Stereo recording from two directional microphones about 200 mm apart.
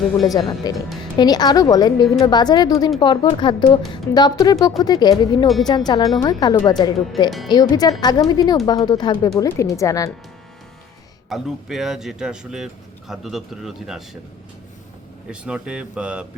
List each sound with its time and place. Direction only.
0.3 s speech: 20° left (ahead or behind)
7.3 s speech: centre (ahead or behind)
7.5 s speech: 20° left (ahead or behind)
11.3 s speech: centre (ahead or behind)
15.3 s speech: 5° right (ahead or behind)